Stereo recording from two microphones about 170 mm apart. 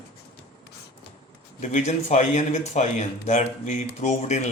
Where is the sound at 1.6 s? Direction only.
45° left (ahead or behind).